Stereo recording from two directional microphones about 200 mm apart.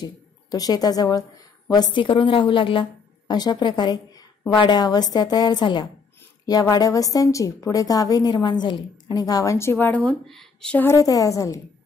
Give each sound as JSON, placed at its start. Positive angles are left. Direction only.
{"t": 0.0, "sound": "a woman's voice", "side_deg": 20}